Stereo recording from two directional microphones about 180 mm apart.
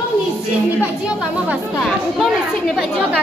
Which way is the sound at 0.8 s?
5° right (ahead or behind).